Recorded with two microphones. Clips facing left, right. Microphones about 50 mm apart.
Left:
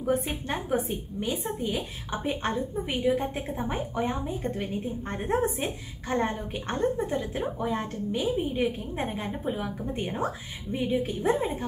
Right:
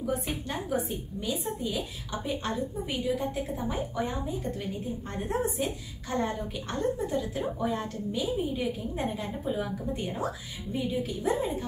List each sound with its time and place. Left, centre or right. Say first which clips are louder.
0.0 s a woman's voice: left 4 dB; left